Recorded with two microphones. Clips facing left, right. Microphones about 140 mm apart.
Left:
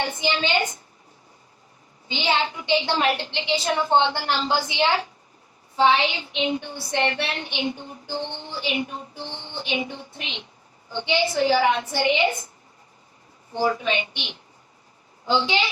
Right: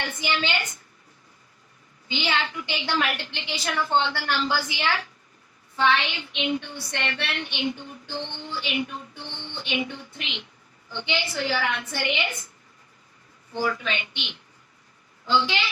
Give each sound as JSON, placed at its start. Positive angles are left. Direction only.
{"t": 0.0, "sound": "a woman's voice", "side_deg": 30}
{"t": 2.0, "sound": "a woman's voice", "side_deg": 25}
{"t": 6.0, "sound": "a woman's voice", "side_deg": 35}
{"t": 13.6, "sound": "a woman's voice", "side_deg": 25}
{"t": 15.4, "sound": "a woman's voice", "side_deg": 30}